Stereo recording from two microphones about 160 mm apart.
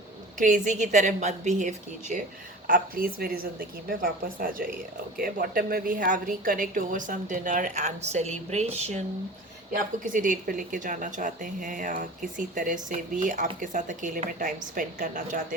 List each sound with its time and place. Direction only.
0.3 s a woman's voice: 55° right (ahead or behind)
2.6 s a woman's voice: 60° right (ahead or behind); by 9.0 s 45° right (ahead or behind)
9.7 s a woman's voice: 55° right (ahead or behind)